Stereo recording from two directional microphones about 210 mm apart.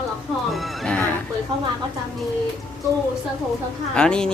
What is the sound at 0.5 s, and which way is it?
Speech, centre (ahead or behind).